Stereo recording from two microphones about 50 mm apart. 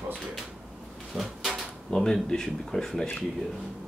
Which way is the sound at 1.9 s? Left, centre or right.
Centre.